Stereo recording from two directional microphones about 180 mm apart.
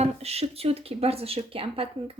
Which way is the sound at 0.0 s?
35° right (ahead or behind).